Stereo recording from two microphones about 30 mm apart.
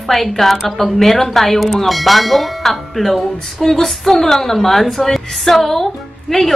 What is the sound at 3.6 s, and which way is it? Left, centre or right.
A woman's voice, centre.